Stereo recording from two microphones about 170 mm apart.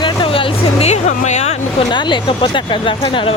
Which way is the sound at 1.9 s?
25° left (ahead or behind).